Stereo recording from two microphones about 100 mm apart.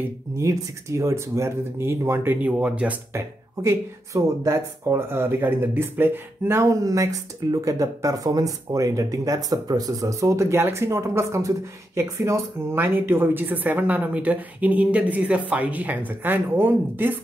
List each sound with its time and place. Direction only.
0.4 s speech: 30° right (ahead or behind)
2.4 s speech: 15° right (ahead or behind)
3.1 s speech: 25° right (ahead or behind)